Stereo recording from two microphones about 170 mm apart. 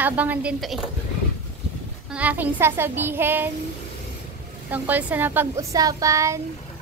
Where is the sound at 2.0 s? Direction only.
10° right (ahead or behind).